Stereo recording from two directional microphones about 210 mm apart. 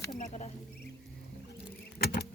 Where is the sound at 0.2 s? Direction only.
35° left (ahead or behind).